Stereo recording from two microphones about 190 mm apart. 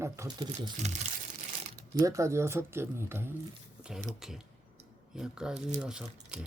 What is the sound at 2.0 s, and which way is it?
Speech, 15° right (ahead or behind).